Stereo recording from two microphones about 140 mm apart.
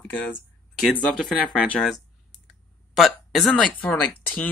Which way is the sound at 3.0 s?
Centre (ahead or behind).